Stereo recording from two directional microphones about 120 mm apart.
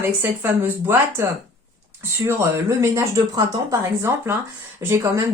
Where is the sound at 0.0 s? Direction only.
15° right (ahead or behind).